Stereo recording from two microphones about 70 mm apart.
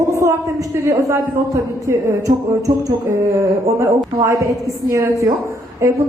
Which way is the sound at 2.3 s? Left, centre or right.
Right.